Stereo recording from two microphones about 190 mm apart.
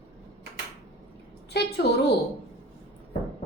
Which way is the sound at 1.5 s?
60° left (ahead or behind).